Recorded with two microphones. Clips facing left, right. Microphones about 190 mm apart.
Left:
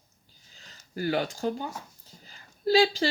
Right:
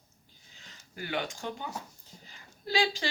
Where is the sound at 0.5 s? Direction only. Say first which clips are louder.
Left 9 dB; 40° left (ahead or behind).